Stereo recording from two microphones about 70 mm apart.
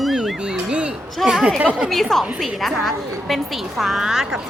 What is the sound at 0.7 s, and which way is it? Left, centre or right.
A woman's voice, centre.